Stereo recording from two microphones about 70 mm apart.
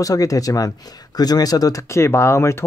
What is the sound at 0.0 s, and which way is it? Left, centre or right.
Speech, left.